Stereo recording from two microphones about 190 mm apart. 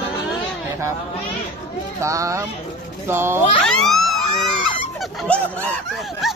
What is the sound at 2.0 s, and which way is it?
A man's voice, 15° right (ahead or behind).